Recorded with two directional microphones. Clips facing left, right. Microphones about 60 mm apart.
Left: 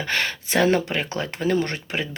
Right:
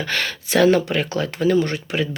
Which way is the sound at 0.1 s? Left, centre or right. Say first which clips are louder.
Right 1 dB; left.